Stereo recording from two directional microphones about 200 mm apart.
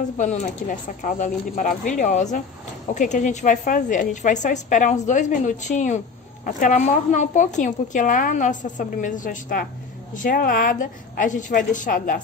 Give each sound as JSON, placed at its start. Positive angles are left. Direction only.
{"t": 0.2, "sound": "a woman's voice", "side_deg": 35}